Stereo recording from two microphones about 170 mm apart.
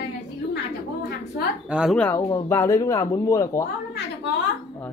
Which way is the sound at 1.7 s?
5° right (ahead or behind).